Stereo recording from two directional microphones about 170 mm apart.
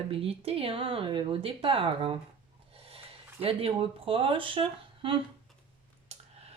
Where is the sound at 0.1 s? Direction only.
35° right (ahead or behind).